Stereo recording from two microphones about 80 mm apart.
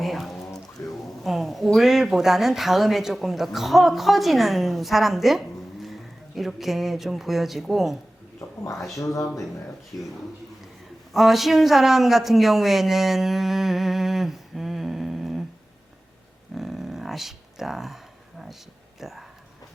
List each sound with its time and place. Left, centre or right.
0.0 s music: centre
0.8 s a sound: left
1.2 s speech: centre
9.9 s speech: left
11.1 s speech: centre
16.6 s a sound: centre
18.9 s speech: centre